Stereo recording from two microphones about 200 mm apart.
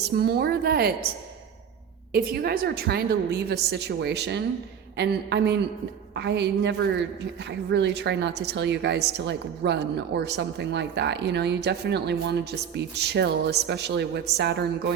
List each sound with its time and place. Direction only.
0.0 s a woman's voice: 50° right (ahead or behind)
2.1 s a woman's voice: 50° right (ahead or behind)